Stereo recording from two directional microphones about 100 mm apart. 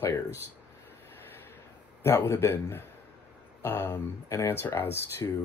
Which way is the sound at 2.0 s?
25° left (ahead or behind).